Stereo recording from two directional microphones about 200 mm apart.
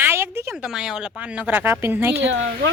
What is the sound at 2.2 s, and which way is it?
Speech, 70° right (ahead or behind).